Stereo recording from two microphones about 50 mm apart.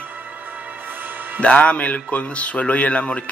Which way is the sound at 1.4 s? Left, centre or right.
Left.